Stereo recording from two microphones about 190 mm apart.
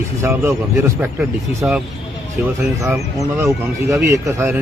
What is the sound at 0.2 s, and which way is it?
Speech, 15° right (ahead or behind).